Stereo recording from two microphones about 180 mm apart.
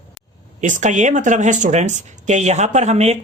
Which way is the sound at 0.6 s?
45° right (ahead or behind).